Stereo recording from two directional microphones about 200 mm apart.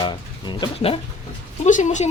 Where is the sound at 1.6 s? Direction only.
40° left (ahead or behind).